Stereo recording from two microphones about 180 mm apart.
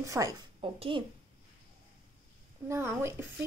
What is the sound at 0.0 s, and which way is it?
A woman's voice, 20° right (ahead or behind).